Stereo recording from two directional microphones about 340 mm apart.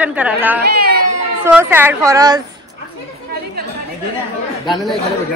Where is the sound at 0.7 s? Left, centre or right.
Right.